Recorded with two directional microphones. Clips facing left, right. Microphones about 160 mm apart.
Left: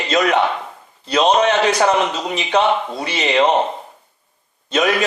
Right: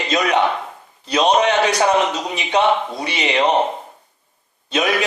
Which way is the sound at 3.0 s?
15° right (ahead or behind).